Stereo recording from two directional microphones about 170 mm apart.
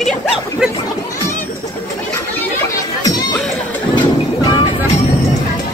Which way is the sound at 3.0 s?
25° left (ahead or behind).